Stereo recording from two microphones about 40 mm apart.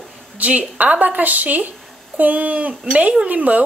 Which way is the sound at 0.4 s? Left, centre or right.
Right.